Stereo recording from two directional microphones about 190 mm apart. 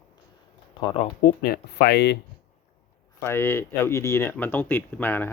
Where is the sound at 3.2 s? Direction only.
10° left (ahead or behind).